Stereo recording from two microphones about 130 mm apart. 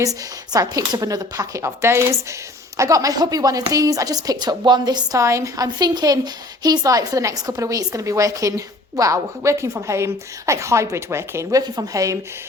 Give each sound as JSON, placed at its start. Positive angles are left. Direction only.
{"t": 0.0, "sound": "a woman's voice", "side_deg": -30}